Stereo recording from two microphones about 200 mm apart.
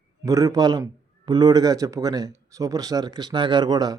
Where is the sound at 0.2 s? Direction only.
15° right (ahead or behind).